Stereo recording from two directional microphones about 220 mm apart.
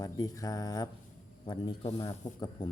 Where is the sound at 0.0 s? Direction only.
15° left (ahead or behind).